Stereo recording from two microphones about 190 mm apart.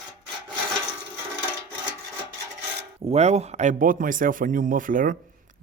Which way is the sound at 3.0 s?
35° right (ahead or behind).